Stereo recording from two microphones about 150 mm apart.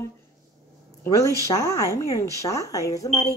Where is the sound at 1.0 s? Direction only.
20° left (ahead or behind).